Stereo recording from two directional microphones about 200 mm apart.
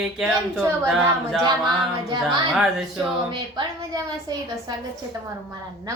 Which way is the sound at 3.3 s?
20° right (ahead or behind).